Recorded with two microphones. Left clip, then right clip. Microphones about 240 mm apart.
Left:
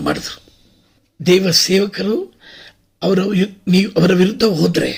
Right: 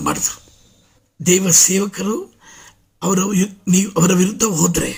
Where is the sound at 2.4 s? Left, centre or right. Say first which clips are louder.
Left 4 dB; right.